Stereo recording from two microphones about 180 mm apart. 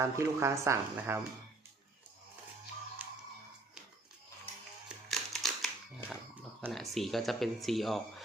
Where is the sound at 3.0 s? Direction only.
10° right (ahead or behind).